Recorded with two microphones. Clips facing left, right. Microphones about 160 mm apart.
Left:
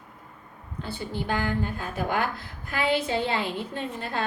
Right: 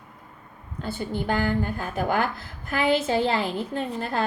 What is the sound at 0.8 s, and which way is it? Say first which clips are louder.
A woman's voice: right 4 dB; 50° right (ahead or behind).